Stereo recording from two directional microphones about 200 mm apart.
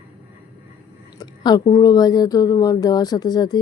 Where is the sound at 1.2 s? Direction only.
20° left (ahead or behind).